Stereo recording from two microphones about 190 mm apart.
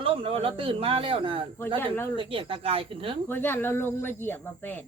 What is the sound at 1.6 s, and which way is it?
Speech, 10° left (ahead or behind).